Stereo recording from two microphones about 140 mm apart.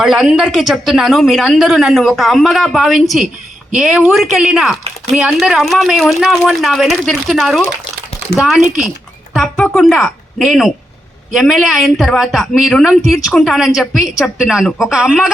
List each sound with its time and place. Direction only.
0.0 s a woman's voice: centre (ahead or behind)